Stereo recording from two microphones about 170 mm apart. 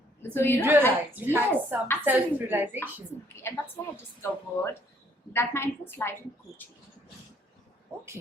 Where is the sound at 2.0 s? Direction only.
10° right (ahead or behind).